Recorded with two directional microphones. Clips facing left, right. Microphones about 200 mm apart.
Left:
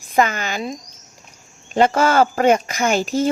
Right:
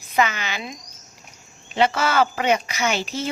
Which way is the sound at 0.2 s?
45° left (ahead or behind).